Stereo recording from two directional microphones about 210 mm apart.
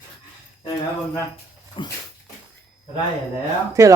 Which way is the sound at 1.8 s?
25° left (ahead or behind).